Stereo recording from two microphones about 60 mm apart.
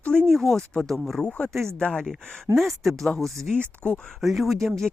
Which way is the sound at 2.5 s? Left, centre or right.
Centre.